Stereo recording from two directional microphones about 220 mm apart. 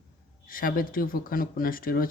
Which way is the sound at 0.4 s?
40° left (ahead or behind).